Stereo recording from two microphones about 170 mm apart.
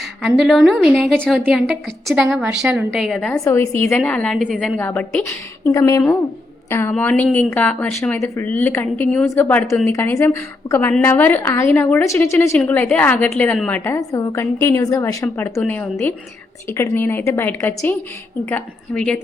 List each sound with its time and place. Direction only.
0.2 s a woman's voice: centre (ahead or behind)
3.3 s a woman's voice: 15° left (ahead or behind)